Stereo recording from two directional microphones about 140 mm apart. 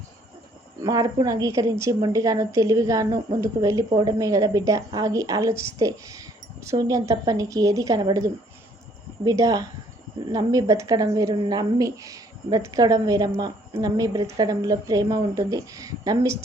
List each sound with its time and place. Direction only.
0.9 s a woman's voice: 25° right (ahead or behind)